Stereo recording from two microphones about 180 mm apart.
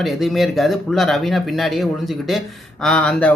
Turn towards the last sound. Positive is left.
turn(degrees=5)  # may be behind; listen again after turning